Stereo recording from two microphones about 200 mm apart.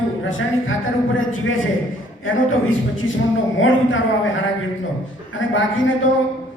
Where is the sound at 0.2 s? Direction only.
75° left (ahead or behind).